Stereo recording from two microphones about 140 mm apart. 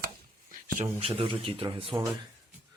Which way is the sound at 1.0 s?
40° right (ahead or behind).